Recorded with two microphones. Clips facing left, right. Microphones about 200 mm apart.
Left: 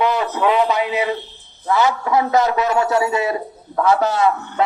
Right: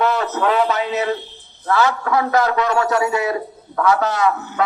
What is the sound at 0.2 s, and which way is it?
A man's voice, 10° left (ahead or behind).